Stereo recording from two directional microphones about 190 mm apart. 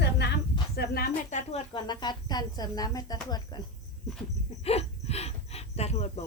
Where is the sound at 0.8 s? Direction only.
45° left (ahead or behind).